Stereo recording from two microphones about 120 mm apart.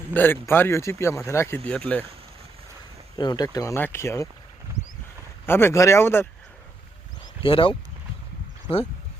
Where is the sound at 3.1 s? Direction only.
35° left (ahead or behind).